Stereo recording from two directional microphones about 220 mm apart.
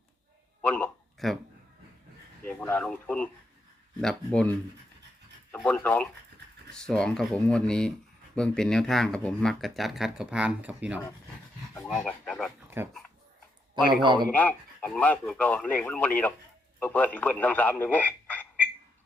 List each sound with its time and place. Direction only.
0.6 s a sound: 5° left (ahead or behind)
2.4 s speech: 5° left (ahead or behind)
12.6 s dog: 10° right (ahead or behind)
14.0 s a man's voice: 20° right (ahead or behind)
14.3 s speech: 5° left (ahead or behind)